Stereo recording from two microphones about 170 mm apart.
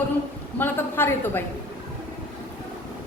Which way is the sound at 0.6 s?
10° left (ahead or behind).